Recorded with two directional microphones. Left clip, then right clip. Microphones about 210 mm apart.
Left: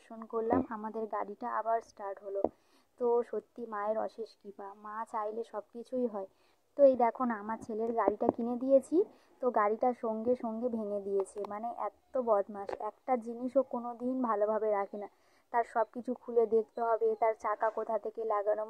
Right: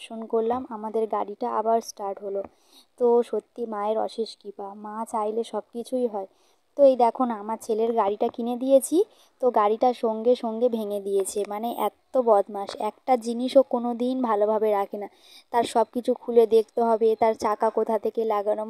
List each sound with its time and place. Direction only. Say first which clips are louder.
0.1 s a woman's voice: right 7 dB; 30° right (ahead or behind)
11.5 s speech: right 9 dB; 60° right (ahead or behind)
12.1 s a woman's voice: right 10 dB; 40° right (ahead or behind)
14.2 s speech: right 8 dB; 45° right (ahead or behind)
15.5 s a woman's voice: right 9 dB; 45° right (ahead or behind)